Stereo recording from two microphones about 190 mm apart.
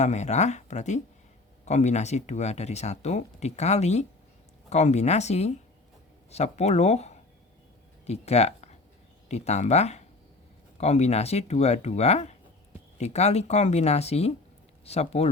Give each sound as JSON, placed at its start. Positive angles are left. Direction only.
{"t": 0.0, "sound": "speech", "side_deg": 35}